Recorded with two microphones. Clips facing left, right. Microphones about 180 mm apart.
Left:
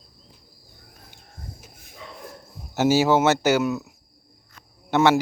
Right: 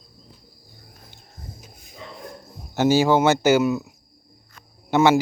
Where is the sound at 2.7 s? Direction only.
5° left (ahead or behind).